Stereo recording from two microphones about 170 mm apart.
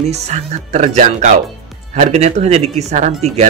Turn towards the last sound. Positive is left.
turn(degrees=-45)  # may be behind; listen again after turning